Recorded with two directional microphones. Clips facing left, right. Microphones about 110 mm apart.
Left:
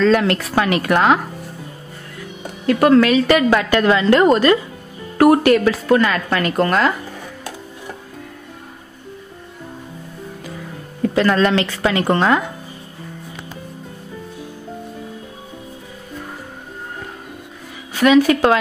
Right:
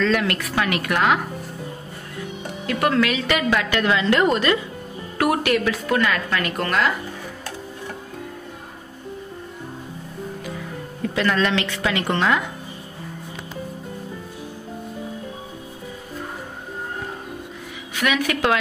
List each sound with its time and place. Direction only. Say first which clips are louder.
0.0 s a woman's voice: left 6 dB; 35° left (ahead or behind)
2.6 s a woman's voice: left 8 dB; 35° left (ahead or behind)
11.1 s a woman's voice: left 5 dB; 40° left (ahead or behind)
17.9 s a woman's voice: left 10 dB; 30° left (ahead or behind)